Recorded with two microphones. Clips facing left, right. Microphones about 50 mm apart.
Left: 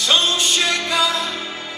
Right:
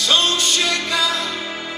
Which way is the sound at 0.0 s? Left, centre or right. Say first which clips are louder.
Even; left.